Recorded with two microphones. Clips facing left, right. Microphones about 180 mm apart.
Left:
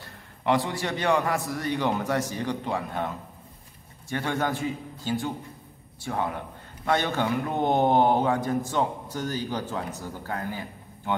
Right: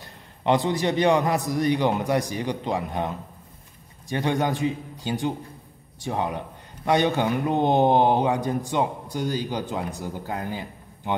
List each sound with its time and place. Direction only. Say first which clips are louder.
0.0 s a man's voice: right 2 dB; 20° right (ahead or behind)
4.1 s a man's voice: right 3 dB; 15° right (ahead or behind)